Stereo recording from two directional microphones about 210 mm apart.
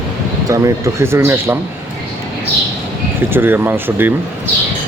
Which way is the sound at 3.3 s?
10° right (ahead or behind).